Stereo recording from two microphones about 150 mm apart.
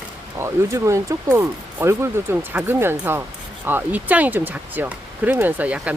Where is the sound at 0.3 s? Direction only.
20° right (ahead or behind).